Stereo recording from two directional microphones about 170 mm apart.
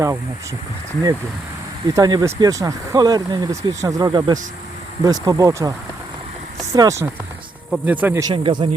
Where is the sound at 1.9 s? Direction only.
20° right (ahead or behind).